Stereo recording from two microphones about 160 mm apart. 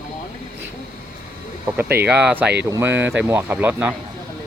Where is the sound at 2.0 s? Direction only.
5° right (ahead or behind).